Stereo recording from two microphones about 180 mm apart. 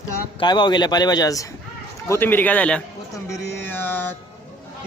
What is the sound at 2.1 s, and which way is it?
Mantra, 10° left (ahead or behind).